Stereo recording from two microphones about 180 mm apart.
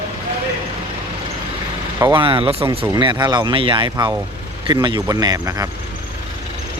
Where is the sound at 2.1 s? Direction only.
30° right (ahead or behind).